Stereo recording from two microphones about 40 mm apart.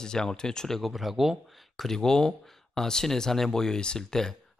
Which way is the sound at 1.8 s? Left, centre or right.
Centre.